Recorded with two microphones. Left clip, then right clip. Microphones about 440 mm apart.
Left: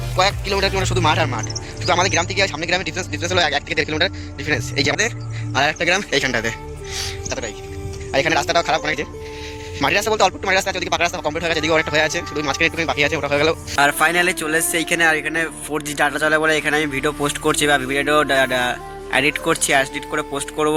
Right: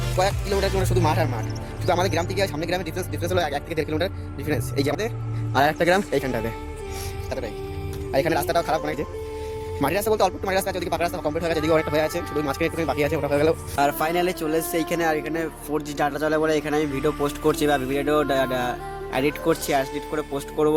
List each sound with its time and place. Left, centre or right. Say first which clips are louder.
0.2 s a man's voice: left 5 dB; right
5.5 s speech: left 2 dB; right
7.0 s music: left 5 dB; right
8.1 s a man's voice: left 4 dB; right